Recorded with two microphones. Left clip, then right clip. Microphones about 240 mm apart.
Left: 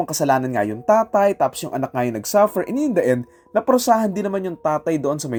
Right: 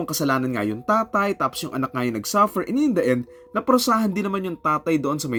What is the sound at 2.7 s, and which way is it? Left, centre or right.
Speech, right.